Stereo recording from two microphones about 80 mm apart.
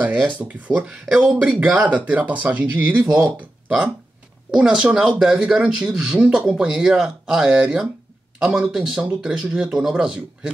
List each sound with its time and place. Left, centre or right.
0.4 s speech: centre